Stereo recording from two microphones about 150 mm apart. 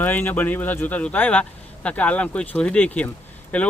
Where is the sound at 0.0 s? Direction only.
15° left (ahead or behind).